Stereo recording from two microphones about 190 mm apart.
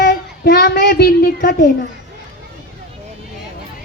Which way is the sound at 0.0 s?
55° left (ahead or behind).